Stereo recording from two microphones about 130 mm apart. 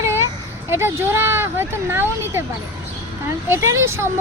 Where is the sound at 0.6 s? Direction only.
20° right (ahead or behind).